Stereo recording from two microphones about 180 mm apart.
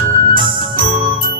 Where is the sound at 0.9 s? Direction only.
50° right (ahead or behind).